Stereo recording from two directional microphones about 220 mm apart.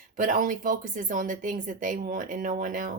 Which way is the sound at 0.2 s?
35° right (ahead or behind).